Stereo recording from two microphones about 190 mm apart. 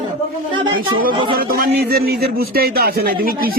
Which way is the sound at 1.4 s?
50° right (ahead or behind).